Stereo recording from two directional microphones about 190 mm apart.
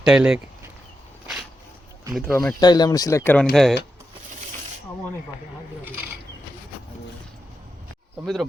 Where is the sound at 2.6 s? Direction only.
20° left (ahead or behind); by 3.7 s 5° left (ahead or behind).